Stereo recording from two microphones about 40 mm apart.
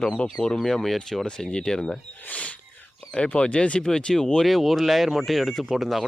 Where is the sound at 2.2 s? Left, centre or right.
Left.